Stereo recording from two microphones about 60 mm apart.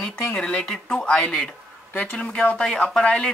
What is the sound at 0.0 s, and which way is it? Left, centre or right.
Speech, centre.